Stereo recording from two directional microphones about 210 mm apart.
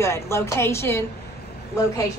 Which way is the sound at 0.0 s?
15° left (ahead or behind).